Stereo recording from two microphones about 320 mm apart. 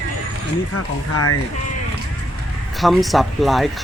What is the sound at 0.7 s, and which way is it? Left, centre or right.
Speech, left.